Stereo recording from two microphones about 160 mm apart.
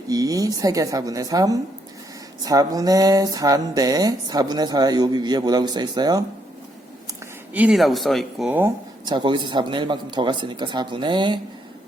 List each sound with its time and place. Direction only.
0.1 s speech: 20° right (ahead or behind)
7.5 s speech: 5° right (ahead or behind)
9.0 s speech: 30° right (ahead or behind)